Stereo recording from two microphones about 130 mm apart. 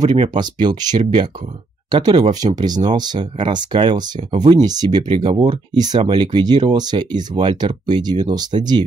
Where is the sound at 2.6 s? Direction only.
35° right (ahead or behind).